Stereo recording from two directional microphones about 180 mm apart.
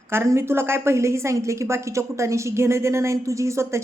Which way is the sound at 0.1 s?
15° right (ahead or behind).